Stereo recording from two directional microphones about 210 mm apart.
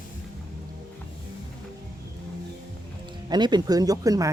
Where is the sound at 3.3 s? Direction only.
20° right (ahead or behind).